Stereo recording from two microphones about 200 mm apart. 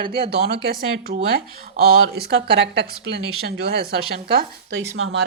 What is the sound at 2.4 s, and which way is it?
A woman's voice, 55° right (ahead or behind).